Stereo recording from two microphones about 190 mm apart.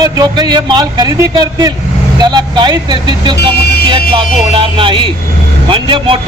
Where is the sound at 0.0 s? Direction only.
20° right (ahead or behind).